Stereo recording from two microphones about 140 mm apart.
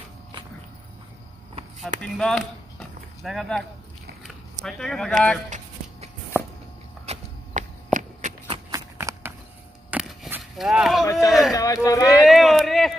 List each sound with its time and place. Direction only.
1.8 s speech: 5° left (ahead or behind)
7.1 s walk: 60° right (ahead or behind)
8.7 s a sound: 20° right (ahead or behind)
9.8 s a sound: 5° right (ahead or behind)
10.5 s speech: 5° right (ahead or behind)
11.1 s speech: 25° left (ahead or behind)
12.3 s speech: centre (ahead or behind)